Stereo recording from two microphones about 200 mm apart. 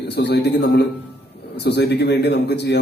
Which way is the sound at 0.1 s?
55° left (ahead or behind).